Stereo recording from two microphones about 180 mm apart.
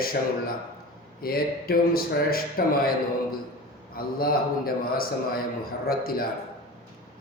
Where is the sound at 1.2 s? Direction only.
55° left (ahead or behind).